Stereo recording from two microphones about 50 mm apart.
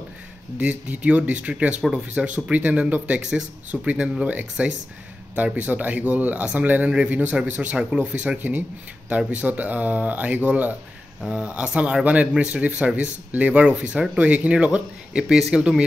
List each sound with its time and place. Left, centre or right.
0.6 s speech: right
1.8 s speech: centre
2.1 s speech: right
3.2 s speech: centre
3.8 s speech: right
11.2 s speech: right